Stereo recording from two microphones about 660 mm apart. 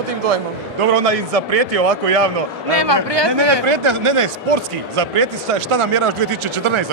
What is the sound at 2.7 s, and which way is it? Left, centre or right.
A man's voice, right.